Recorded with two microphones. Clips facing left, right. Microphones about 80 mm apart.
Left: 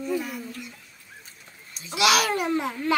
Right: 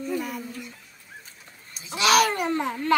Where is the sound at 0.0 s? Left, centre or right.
Centre.